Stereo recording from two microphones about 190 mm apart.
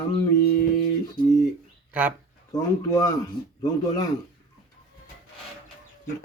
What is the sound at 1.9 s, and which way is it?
Speech, 10° right (ahead or behind).